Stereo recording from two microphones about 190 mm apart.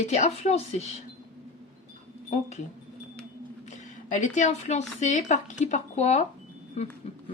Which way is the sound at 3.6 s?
40° left (ahead or behind).